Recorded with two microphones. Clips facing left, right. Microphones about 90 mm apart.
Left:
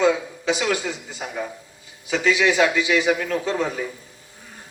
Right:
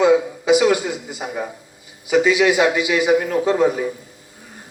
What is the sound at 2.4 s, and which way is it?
A man's voice, 25° right (ahead or behind).